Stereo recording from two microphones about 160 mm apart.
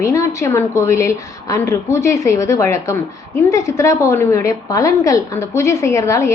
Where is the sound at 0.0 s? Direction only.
20° left (ahead or behind).